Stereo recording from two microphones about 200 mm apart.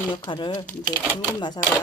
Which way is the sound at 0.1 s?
25° left (ahead or behind).